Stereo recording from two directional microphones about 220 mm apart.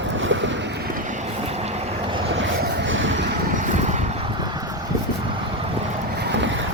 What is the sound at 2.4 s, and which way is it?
Vehicle, 55° right (ahead or behind).